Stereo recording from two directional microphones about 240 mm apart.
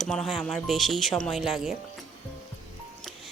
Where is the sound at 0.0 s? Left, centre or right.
Centre.